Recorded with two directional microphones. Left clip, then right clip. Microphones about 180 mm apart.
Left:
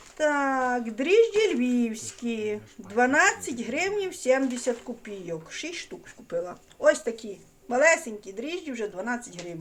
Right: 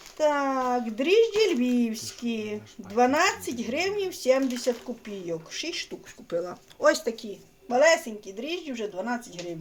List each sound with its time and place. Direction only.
0.2 s speech: 5° right (ahead or behind)
6.3 s speech: 25° right (ahead or behind)
7.7 s a woman's voice: 5° right (ahead or behind)